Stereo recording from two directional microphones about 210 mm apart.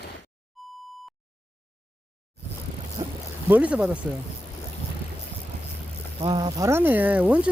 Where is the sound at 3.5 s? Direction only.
5° right (ahead or behind).